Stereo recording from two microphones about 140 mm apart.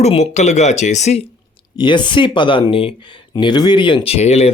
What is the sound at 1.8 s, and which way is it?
Speech, 35° left (ahead or behind).